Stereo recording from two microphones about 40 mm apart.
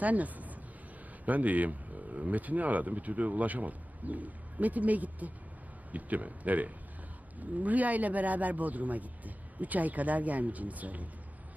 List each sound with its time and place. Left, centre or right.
0.0 s a man's voice: right